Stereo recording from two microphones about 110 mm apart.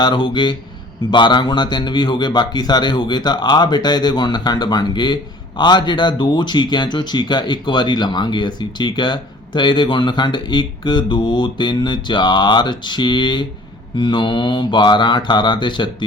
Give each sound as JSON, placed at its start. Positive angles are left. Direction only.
{"t": 0.0, "sound": "a man's voice", "side_deg": 45}